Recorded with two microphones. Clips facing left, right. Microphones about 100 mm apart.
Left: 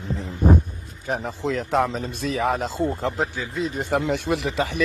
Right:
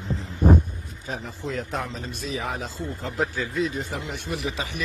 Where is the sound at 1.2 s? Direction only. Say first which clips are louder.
Left 5 dB; 85° left.